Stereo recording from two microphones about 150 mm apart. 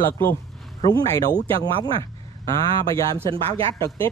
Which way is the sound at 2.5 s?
25° left (ahead or behind).